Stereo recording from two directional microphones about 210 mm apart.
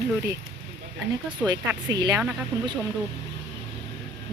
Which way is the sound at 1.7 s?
20° right (ahead or behind).